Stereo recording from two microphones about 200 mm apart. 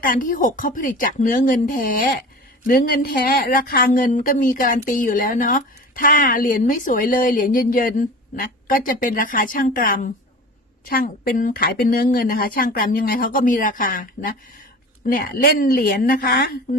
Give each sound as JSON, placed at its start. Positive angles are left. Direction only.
{"t": 0.0, "sound": "speech", "side_deg": 45}